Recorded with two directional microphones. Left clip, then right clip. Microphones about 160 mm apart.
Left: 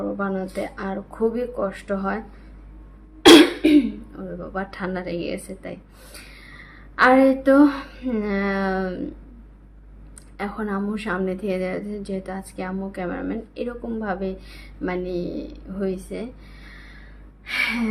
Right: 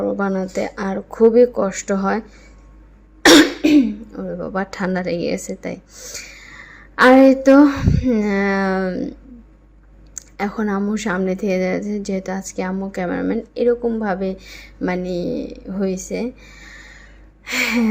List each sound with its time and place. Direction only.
0.0 s speech: 40° right (ahead or behind)
4.1 s a woman's voice: 40° right (ahead or behind)
10.2 s a woman's voice: 40° right (ahead or behind)
17.4 s gasp: 40° right (ahead or behind)